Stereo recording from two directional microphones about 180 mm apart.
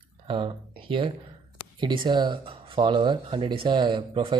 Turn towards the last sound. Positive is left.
turn(degrees=-25)  # may be behind; listen again after turning